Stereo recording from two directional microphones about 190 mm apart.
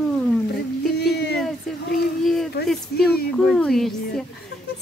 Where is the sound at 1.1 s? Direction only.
60° left (ahead or behind).